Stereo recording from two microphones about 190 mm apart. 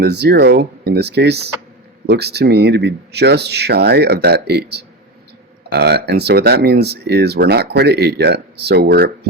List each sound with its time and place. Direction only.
0.0 s speech: 60° right (ahead or behind)